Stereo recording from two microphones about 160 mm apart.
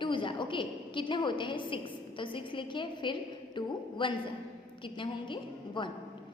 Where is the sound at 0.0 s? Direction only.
30° left (ahead or behind).